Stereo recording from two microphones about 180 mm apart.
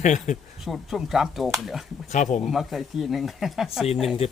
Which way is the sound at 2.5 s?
Centre (ahead or behind).